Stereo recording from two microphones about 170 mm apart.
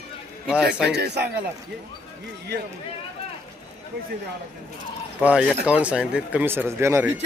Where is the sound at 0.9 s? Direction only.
75° right (ahead or behind).